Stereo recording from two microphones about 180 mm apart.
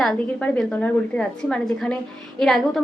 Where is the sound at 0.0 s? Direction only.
5° left (ahead or behind).